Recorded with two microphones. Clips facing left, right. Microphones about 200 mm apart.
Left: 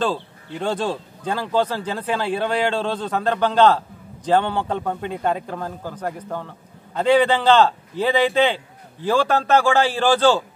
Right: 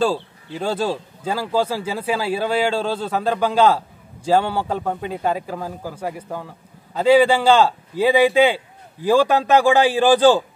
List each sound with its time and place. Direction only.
0.6 s speech: 5° right (ahead or behind)